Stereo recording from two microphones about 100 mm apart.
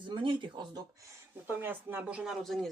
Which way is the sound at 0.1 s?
55° right (ahead or behind).